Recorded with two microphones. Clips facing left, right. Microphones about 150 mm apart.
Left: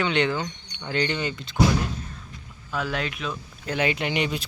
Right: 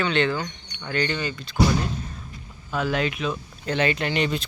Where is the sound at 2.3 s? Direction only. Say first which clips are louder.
Right 2 dB; centre (ahead or behind).